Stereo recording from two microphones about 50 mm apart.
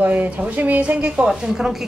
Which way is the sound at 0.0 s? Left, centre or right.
Right.